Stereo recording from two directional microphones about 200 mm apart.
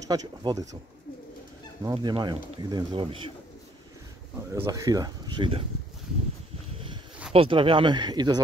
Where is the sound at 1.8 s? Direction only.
25° right (ahead or behind).